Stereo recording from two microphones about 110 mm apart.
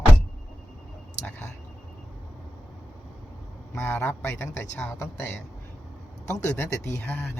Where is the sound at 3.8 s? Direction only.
20° left (ahead or behind).